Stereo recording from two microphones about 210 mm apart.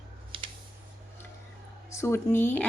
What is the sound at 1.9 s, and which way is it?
Speech, 10° left (ahead or behind).